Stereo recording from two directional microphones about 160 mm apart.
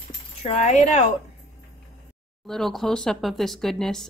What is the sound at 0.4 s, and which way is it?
Speech, 45° left (ahead or behind).